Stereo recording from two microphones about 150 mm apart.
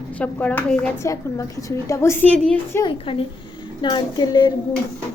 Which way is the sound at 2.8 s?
35° left (ahead or behind).